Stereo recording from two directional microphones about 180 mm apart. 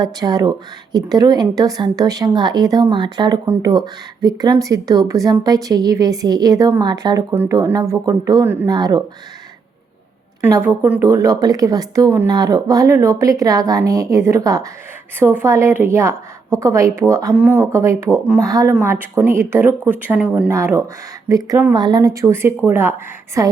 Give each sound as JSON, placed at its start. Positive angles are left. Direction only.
{"t": 0.0, "sound": "a woman's voice", "side_deg": -20}
{"t": 10.4, "sound": "a woman's voice", "side_deg": -10}